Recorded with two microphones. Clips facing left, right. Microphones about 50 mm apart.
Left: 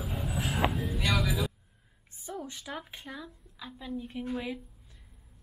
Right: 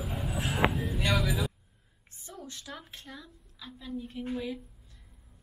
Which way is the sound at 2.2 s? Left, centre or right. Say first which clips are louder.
Left 5 dB; centre.